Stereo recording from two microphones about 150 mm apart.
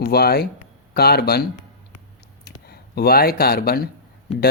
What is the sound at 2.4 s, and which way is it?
A woman's voice, 90° left.